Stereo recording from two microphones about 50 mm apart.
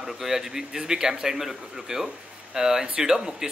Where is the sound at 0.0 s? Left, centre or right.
Centre.